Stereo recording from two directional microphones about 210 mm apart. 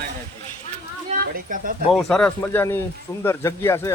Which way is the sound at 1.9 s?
5° left (ahead or behind).